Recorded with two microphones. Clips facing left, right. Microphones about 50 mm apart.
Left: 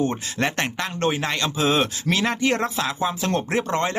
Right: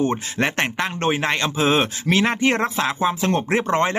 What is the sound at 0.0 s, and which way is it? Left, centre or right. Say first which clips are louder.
Speech: right 2 dB; centre.